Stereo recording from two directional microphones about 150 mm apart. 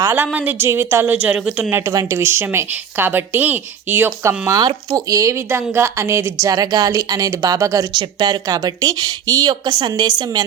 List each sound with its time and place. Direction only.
0.0 s a woman's voice: 15° right (ahead or behind)
1.7 s a woman's voice: 20° right (ahead or behind)